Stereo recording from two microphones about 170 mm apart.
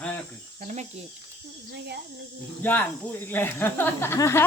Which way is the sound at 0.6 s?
45° right (ahead or behind).